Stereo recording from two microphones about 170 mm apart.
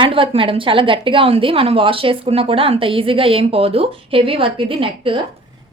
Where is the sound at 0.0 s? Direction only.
30° right (ahead or behind).